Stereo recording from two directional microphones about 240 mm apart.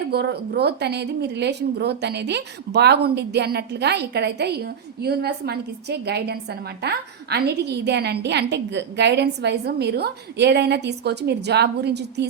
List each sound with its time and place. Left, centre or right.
0.1 s a woman's voice: right